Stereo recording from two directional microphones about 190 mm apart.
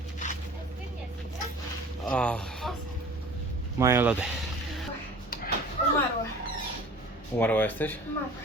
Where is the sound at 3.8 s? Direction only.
10° right (ahead or behind).